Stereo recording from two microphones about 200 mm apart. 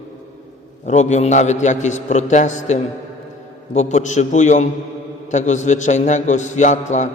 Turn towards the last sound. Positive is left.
turn(degrees=35)  # may be behind; listen again after turning